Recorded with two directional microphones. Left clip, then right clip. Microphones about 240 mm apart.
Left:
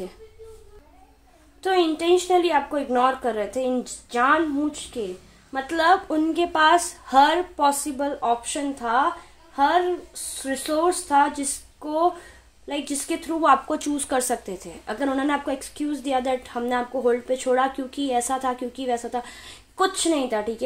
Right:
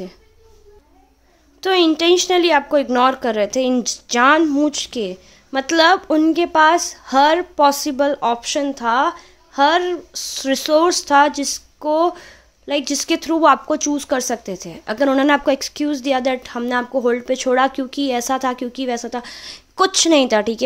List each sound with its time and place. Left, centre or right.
1.6 s a woman's voice: right